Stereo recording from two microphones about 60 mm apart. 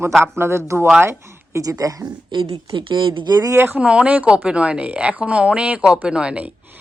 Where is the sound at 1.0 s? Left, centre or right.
Right.